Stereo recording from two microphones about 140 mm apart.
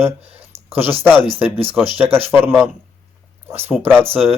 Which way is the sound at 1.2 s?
40° right (ahead or behind).